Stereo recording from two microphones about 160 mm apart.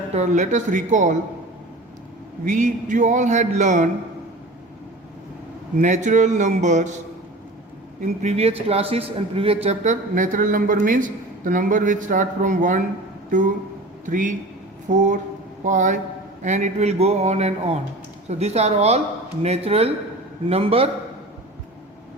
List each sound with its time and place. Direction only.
0.1 s a man's voice: 45° right (ahead or behind)
2.4 s a man's voice: 50° right (ahead or behind)
5.7 s a man's voice: 50° right (ahead or behind)
8.0 s a man's voice: 45° right (ahead or behind)
14.0 s a man's voice: 55° right (ahead or behind); by 20.9 s 35° right (ahead or behind)